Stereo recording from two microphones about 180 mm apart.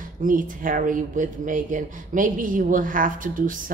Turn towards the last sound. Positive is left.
turn(degrees=-50)  # may be behind; listen again after turning